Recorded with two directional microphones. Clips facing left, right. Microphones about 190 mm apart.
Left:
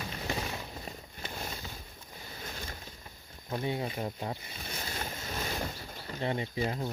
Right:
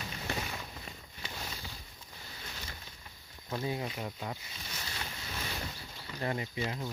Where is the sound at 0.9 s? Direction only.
50° left (ahead or behind).